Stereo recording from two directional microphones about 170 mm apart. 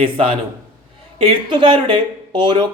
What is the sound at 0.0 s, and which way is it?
A man's voice, 35° right (ahead or behind).